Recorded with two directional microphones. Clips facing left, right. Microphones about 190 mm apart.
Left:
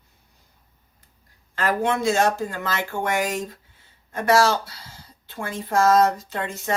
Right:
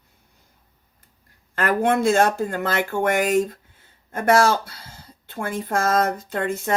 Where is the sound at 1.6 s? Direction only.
55° right (ahead or behind).